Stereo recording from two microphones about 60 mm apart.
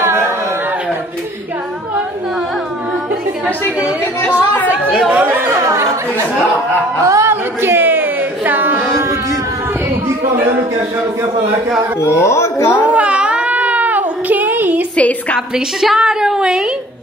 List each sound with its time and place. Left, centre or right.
4.2 s speech: left
5.2 s speech: right
5.5 s chatter: right
7.1 s speech: right
7.6 s music: right
8.9 s a sound: right
12.0 s speech: left
12.6 s a woman's voice: left
12.9 s baby cry: right
15.0 s a woman's voice: left
15.5 s a woman's voice: centre